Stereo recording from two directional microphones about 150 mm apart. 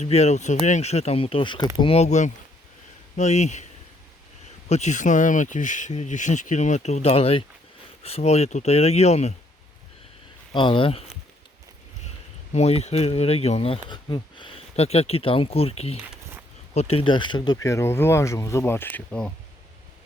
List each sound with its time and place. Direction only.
0.0 s speech: 45° left (ahead or behind)
4.7 s speech: 50° left (ahead or behind)
10.5 s speech: 30° left (ahead or behind)
12.5 s speech: 45° left (ahead or behind); by 19.3 s 10° left (ahead or behind)